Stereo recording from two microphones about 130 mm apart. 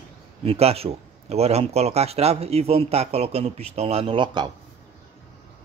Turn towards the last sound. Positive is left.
turn(degrees=-35)  # may be behind; listen again after turning